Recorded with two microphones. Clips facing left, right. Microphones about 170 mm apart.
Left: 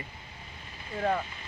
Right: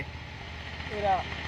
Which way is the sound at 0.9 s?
90° right.